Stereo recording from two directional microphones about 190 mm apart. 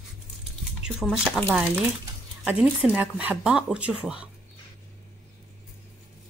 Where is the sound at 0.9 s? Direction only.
Centre (ahead or behind).